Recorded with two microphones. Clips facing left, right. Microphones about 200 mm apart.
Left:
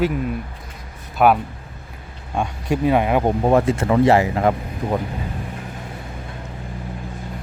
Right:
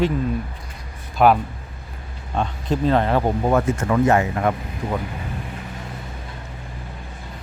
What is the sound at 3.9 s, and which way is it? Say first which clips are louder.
Speech: left 3 dB; 30° left (ahead or behind).